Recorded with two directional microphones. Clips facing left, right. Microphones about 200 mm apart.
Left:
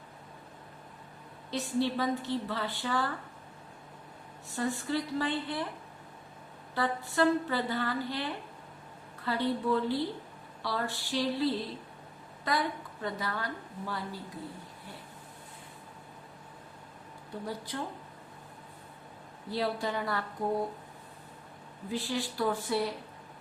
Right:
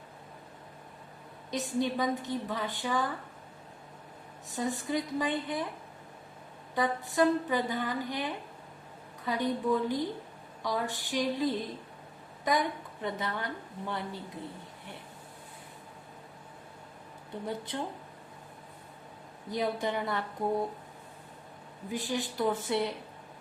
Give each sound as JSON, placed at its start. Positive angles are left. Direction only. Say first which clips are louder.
{"t": 1.5, "sound": "a woman's voice", "louder": "even", "side_deg": -15}
{"t": 4.5, "sound": "a woman's voice", "louder": "even", "side_deg": -20}
{"t": 6.7, "sound": "a woman's voice", "louder": "right 2 dB", "side_deg": -20}
{"t": 17.4, "sound": "a woman's voice", "louder": "right 2 dB", "side_deg": -25}
{"t": 19.5, "sound": "a woman's voice", "louder": "right 1 dB", "side_deg": -20}
{"t": 21.9, "sound": "a woman's voice", "louder": "even", "side_deg": -20}